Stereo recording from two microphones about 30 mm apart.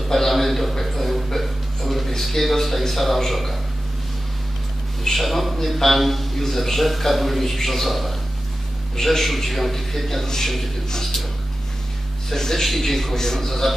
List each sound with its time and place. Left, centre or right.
0.1 s a sound: centre
2.9 s a man's voice: centre
5.0 s a man's voice: centre
12.3 s a man's voice: centre